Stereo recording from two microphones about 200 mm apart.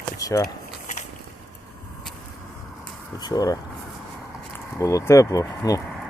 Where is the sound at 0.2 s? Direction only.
15° left (ahead or behind).